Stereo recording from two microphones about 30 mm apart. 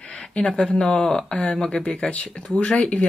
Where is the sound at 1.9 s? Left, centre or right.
Left.